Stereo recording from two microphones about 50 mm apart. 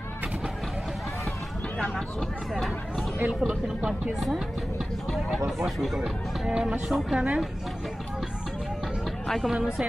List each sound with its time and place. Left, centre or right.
2.5 s speech: centre
3.2 s speech: centre
6.9 s speech: centre
7.2 s speech: centre
9.0 s a sound: centre
9.5 s speech: centre